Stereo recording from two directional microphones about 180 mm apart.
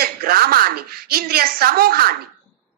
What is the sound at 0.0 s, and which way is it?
A woman's voice, 55° right (ahead or behind).